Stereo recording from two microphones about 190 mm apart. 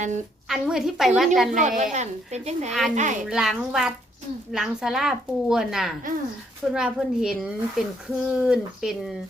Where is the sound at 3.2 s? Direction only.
Centre (ahead or behind).